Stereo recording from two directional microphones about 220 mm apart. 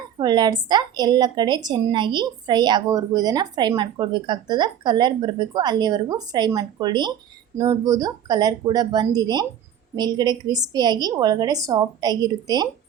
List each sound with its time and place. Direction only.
0.2 s a woman's voice: 20° right (ahead or behind)